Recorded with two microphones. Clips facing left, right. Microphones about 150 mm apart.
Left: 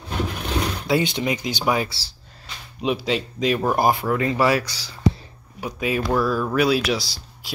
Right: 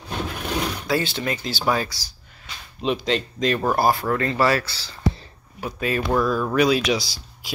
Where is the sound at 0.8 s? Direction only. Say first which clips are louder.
Left 4 dB; 20° left (ahead or behind).